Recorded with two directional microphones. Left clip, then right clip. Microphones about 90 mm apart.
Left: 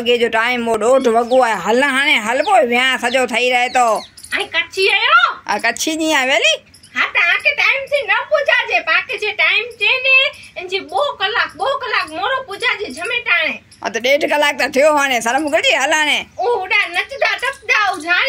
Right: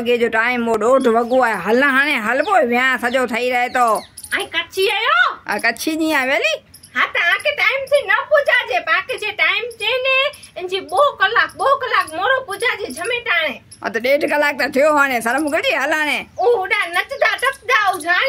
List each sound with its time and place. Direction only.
0.0 s a woman's voice: 30° right (ahead or behind)
5.5 s a woman's voice: 25° right (ahead or behind)